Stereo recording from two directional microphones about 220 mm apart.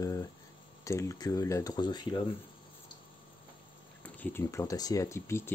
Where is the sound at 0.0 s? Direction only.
15° left (ahead or behind).